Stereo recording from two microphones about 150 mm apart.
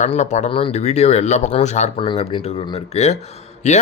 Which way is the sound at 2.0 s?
35° left (ahead or behind).